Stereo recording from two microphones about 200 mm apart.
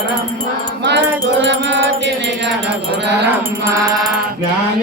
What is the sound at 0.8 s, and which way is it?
Music, 60° right (ahead or behind).